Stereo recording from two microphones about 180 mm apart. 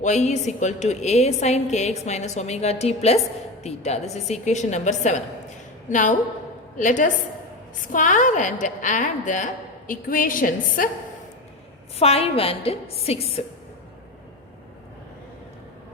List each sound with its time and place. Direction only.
0.0 s a woman's voice: 40° left (ahead or behind)
11.9 s a woman's voice: 35° left (ahead or behind)